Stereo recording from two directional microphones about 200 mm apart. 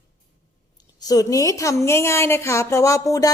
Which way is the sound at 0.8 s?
20° left (ahead or behind).